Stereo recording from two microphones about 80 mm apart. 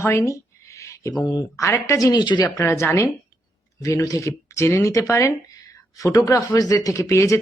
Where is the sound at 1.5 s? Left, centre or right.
Left.